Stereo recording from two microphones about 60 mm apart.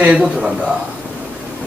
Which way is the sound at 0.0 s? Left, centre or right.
Centre.